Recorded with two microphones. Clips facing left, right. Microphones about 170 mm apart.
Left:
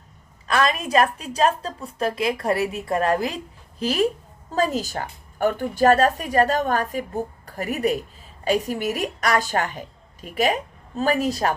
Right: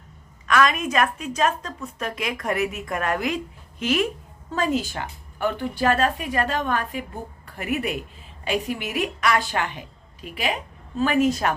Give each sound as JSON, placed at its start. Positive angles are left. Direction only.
{"t": 0.4, "sound": "a woman's voice", "side_deg": 30}